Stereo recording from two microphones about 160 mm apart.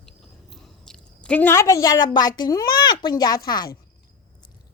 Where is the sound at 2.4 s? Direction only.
25° left (ahead or behind).